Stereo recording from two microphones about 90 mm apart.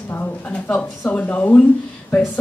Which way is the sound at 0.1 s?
20° left (ahead or behind).